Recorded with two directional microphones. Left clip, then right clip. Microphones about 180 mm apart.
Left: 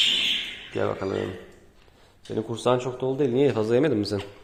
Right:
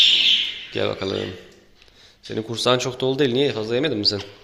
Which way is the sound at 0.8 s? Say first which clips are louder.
Right 2 dB; centre (ahead or behind).